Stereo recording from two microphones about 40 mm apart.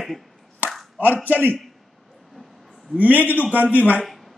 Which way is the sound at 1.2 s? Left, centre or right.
Right.